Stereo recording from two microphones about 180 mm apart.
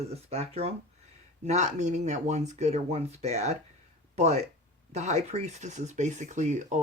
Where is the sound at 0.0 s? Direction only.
35° right (ahead or behind).